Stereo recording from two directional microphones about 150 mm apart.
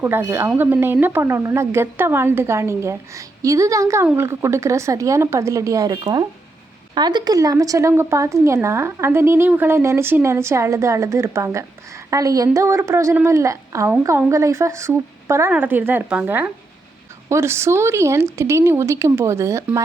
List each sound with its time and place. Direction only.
0.0 s speech: 15° right (ahead or behind)